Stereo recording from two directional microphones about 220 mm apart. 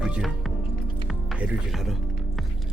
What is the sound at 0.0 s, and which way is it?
Music, centre (ahead or behind).